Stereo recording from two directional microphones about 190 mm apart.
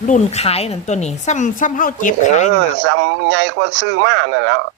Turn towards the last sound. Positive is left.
turn(degrees=-65)  # may be behind; listen again after turning